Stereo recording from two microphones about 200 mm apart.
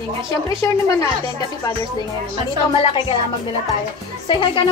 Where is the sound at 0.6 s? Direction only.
15° left (ahead or behind).